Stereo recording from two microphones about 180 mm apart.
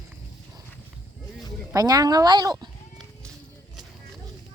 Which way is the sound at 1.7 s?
20° right (ahead or behind).